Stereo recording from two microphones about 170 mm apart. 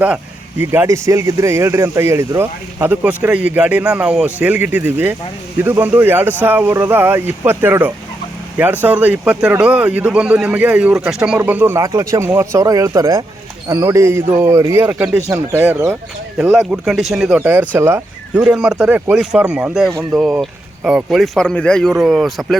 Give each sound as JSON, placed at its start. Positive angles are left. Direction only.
{"t": 0.6, "sound": "speech", "side_deg": -10}
{"t": 16.4, "sound": "speech", "side_deg": 0}